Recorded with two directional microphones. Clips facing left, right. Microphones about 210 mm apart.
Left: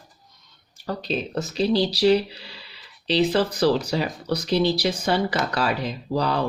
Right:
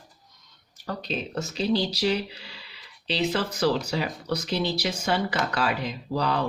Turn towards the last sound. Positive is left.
turn(degrees=35)  # may be behind; listen again after turning